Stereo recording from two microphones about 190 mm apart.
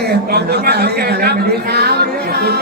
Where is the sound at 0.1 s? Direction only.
60° right (ahead or behind).